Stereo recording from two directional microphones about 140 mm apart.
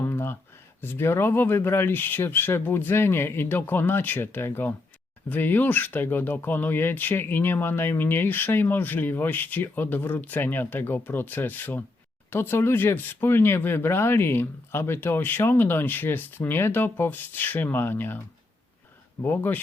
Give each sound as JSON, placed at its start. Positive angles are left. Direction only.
{"t": 0.0, "sound": "a sound", "side_deg": 15}
{"t": 0.8, "sound": "speech", "side_deg": 15}
{"t": 19.2, "sound": "speech", "side_deg": 15}